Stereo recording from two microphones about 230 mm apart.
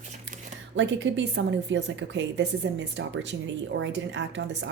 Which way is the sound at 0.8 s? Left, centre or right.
Right.